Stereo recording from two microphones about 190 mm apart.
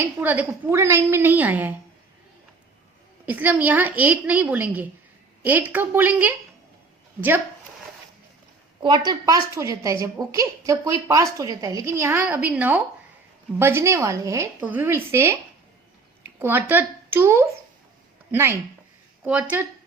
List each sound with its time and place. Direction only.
0.2 s a woman's voice: 10° right (ahead or behind)
3.2 s a woman's voice: 10° right (ahead or behind)
8.8 s a woman's voice: 25° right (ahead or behind)
16.4 s a woman's voice: 10° right (ahead or behind)